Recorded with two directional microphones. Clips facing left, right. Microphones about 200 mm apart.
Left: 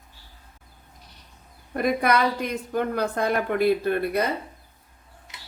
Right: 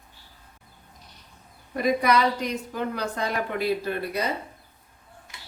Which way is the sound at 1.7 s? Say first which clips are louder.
Even; 55° left (ahead or behind).